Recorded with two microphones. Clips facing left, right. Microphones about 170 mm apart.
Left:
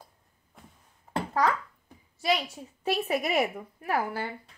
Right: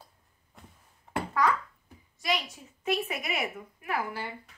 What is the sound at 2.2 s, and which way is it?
A woman's voice, 30° left (ahead or behind).